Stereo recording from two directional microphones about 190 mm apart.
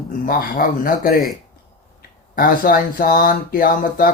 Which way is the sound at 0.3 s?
50° left (ahead or behind).